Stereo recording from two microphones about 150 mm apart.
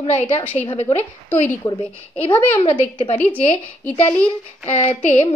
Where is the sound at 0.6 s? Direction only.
40° left (ahead or behind).